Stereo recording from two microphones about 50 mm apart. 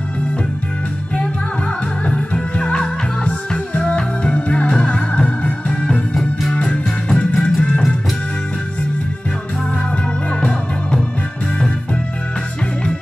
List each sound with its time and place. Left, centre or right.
2.0 s music: left